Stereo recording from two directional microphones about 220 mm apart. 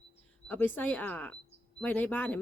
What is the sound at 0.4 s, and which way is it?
Speech, 10° left (ahead or behind).